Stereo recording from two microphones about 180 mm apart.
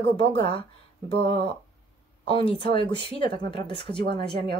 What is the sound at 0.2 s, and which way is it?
Speech, 30° left (ahead or behind).